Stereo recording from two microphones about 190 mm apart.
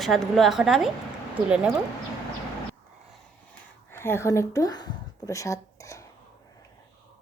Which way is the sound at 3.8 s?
10° left (ahead or behind).